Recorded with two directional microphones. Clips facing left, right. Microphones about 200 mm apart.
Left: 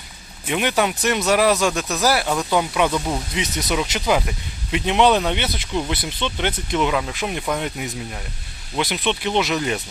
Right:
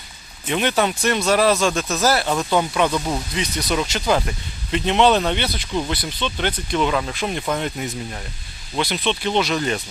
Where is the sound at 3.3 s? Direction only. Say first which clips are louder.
Even; 20° left (ahead or behind).